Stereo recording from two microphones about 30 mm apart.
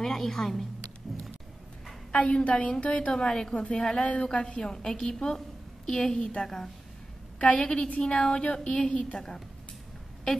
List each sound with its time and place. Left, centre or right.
0.0 s a woman's voice: centre
2.3 s a woman's voice: left
3.1 s a woman's voice: left
7.3 s a woman's voice: left